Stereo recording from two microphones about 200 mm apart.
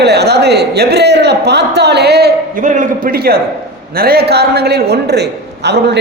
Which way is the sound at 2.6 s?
40° right (ahead or behind).